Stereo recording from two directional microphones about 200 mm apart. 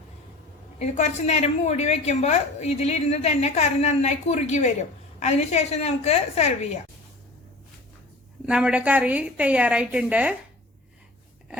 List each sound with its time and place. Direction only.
0.8 s a woman's voice: 35° left (ahead or behind)
8.4 s a woman's voice: 5° right (ahead or behind)